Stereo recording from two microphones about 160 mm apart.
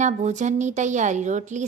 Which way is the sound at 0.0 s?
50° right (ahead or behind).